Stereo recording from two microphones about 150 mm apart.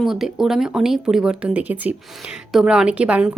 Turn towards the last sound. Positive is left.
turn(degrees=-5)  # may be behind; listen again after turning